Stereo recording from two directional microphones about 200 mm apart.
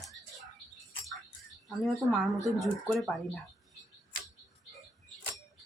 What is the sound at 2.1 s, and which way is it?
Speech, centre (ahead or behind).